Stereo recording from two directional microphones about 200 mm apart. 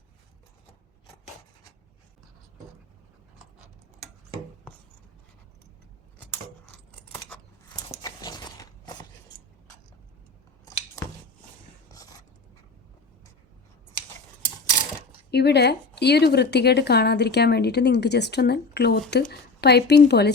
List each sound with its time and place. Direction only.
7.8 s biting: 20° left (ahead or behind)
11.0 s a sound: 15° left (ahead or behind)
15.3 s a woman's voice: 55° left (ahead or behind)